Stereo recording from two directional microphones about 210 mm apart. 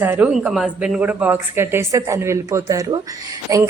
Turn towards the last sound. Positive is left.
turn(degrees=-15)  # may be behind; listen again after turning